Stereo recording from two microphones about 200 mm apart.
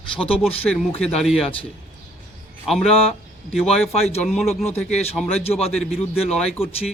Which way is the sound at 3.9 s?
30° left (ahead or behind).